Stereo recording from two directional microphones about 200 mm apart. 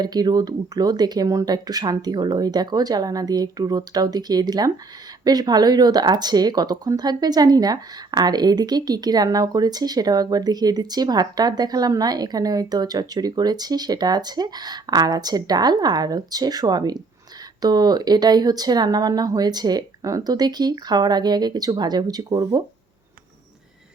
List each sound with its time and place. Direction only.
0.0 s speech: 20° right (ahead or behind)